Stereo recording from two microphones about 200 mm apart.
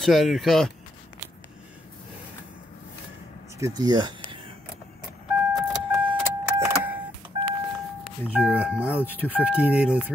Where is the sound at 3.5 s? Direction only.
15° right (ahead or behind).